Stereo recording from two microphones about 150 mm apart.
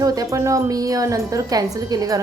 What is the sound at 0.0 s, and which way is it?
Speech, 25° right (ahead or behind).